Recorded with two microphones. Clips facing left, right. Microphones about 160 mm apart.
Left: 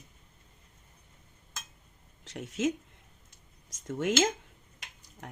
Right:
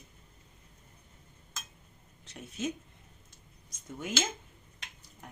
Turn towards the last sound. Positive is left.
turn(degrees=75)  # may be behind; listen again after turning